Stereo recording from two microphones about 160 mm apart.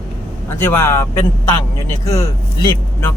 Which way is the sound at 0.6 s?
15° left (ahead or behind).